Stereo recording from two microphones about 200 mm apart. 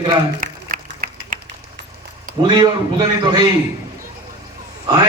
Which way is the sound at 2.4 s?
20° right (ahead or behind).